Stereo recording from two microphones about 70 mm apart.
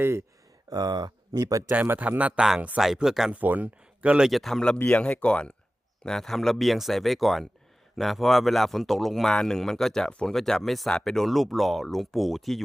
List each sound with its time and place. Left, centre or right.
0.0 s speech: right
0.7 s speech: right
1.7 s speech: right
2.8 s a man's voice: centre
3.3 s speech: right
4.3 s a man's voice: centre
4.9 s a man's voice: centre